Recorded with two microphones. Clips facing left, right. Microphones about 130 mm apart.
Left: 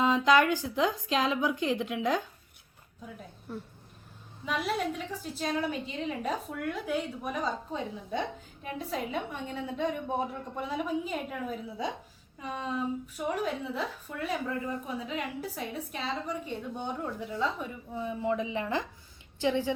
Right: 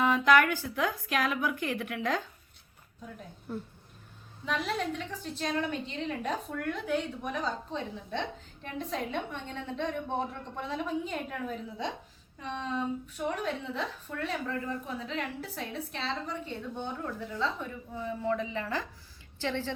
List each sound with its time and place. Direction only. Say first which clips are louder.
0.0 s a woman's voice: even; 20° left (ahead or behind)
3.1 s a woman's voice: right 2 dB; centre (ahead or behind)